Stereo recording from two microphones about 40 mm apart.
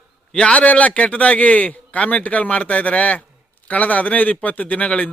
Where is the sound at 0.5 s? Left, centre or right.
Left.